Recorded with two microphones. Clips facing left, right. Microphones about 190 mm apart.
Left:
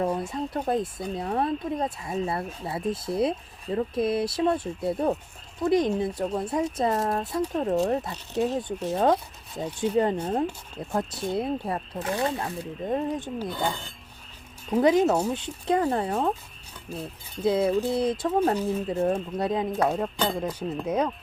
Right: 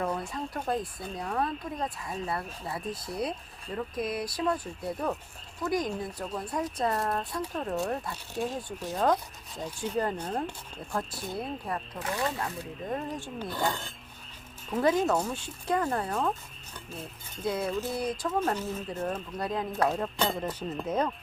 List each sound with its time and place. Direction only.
0.1 s speech: 25° left (ahead or behind)
14.7 s speech: 20° left (ahead or behind)
17.4 s speech: 20° left (ahead or behind)
18.3 s speech: 35° left (ahead or behind)
18.5 s speech: 15° left (ahead or behind)
19.0 s speech: 25° left (ahead or behind)
20.0 s speech: 5° left (ahead or behind)